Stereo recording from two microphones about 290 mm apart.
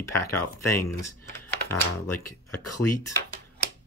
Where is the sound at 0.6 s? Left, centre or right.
Centre.